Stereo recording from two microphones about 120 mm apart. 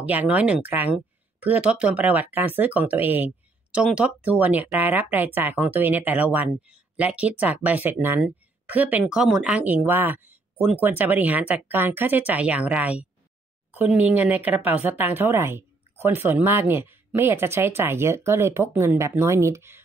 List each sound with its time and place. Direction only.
0.0 s speech: 15° right (ahead or behind)
9.0 s speech: 5° right (ahead or behind); by 19.8 s 20° right (ahead or behind)